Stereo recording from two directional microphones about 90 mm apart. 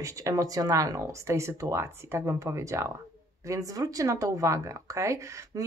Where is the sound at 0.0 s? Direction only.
35° right (ahead or behind).